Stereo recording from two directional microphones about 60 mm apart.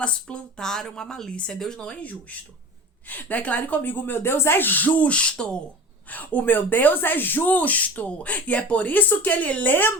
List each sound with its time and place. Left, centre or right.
0.0 s speech: centre
3.1 s speech: left
6.1 s speech: left